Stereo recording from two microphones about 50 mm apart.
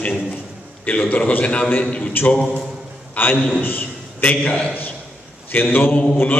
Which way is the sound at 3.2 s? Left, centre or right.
Left.